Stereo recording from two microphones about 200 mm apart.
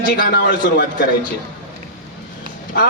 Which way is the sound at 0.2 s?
50° left (ahead or behind).